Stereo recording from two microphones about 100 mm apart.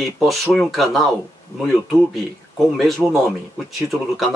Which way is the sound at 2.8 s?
Centre (ahead or behind).